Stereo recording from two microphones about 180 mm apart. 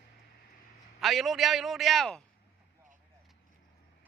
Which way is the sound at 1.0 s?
Centre (ahead or behind).